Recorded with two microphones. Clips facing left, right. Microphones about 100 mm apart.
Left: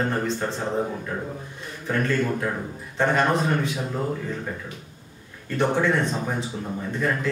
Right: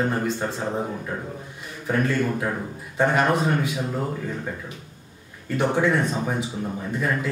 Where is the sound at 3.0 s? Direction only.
10° right (ahead or behind).